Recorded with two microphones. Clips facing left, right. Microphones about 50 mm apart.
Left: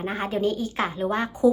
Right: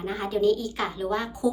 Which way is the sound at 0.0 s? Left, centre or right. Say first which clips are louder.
Right 1 dB; left.